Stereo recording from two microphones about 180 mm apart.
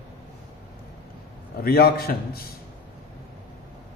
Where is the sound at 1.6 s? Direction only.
60° left (ahead or behind).